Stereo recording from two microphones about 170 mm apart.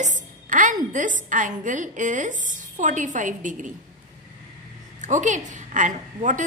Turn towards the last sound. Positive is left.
turn(degrees=-50)  # may be behind; listen again after turning